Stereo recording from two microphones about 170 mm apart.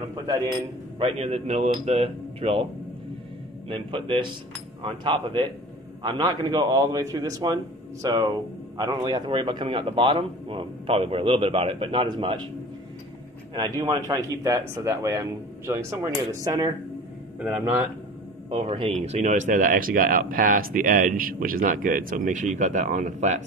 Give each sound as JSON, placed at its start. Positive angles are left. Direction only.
{"t": 0.9, "sound": "speech", "side_deg": -35}
{"t": 3.6, "sound": "speech", "side_deg": -30}
{"t": 13.6, "sound": "speech", "side_deg": -25}
{"t": 17.4, "sound": "speech", "side_deg": -5}
{"t": 18.5, "sound": "speech", "side_deg": -35}